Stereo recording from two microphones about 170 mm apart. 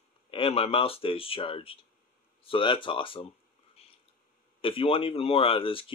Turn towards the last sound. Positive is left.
turn(degrees=30)  # may be behind; listen again after turning